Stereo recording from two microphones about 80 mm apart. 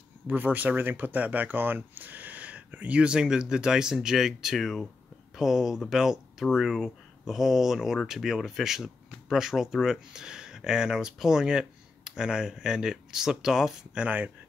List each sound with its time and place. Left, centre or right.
0.3 s speech: right